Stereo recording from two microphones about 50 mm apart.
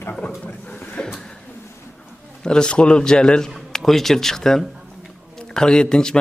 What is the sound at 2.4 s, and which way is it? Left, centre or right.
A man's voice, centre.